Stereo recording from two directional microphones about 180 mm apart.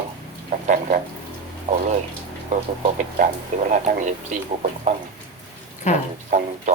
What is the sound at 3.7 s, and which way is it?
Speech, 45° right (ahead or behind).